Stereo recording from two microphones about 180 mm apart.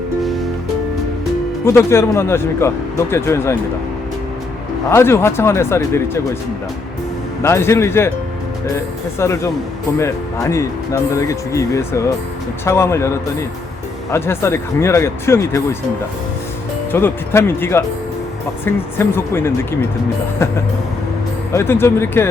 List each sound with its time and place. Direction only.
1.6 s speech: 15° left (ahead or behind)
4.9 s speech: 15° left (ahead or behind)
7.4 s speech: 15° left (ahead or behind)
9.1 s speech: 15° left (ahead or behind)
16.9 s speech: 10° left (ahead or behind)
21.5 s speech: 15° left (ahead or behind)